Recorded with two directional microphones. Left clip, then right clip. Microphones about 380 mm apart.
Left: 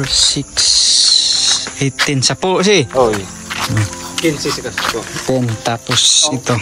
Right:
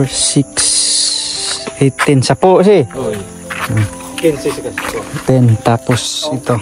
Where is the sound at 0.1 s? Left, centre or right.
Centre.